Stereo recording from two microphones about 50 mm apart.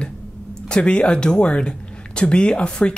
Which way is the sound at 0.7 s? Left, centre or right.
Left.